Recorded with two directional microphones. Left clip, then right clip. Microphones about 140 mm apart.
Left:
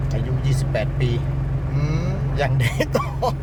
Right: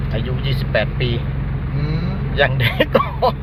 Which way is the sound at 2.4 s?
15° left (ahead or behind).